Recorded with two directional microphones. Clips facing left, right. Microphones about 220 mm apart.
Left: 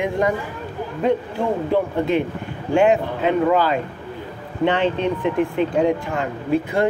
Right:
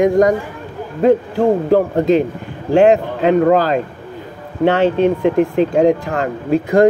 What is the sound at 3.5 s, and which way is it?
A man's voice, 40° right (ahead or behind).